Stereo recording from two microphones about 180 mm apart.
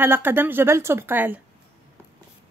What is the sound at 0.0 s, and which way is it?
A woman's voice, 10° right (ahead or behind).